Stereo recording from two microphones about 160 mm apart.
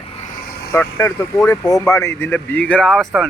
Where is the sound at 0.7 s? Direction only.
15° left (ahead or behind).